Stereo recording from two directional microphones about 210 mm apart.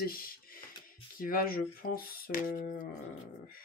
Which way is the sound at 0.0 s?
45° left (ahead or behind).